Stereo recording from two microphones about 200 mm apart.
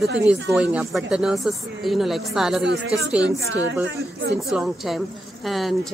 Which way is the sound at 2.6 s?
65° right (ahead or behind).